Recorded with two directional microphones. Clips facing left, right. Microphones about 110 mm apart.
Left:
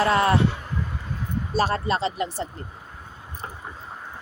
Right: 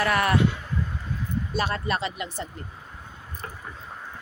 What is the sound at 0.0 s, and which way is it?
Speech, 25° left (ahead or behind).